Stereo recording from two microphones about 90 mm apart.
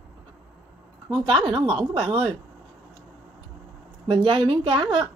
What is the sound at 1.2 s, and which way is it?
Speech, 75° right (ahead or behind).